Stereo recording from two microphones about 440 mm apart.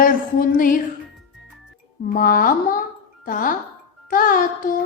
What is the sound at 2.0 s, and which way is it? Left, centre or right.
A woman's voice, centre.